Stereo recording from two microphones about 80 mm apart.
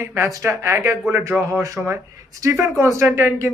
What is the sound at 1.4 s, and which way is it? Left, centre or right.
A man's voice, right.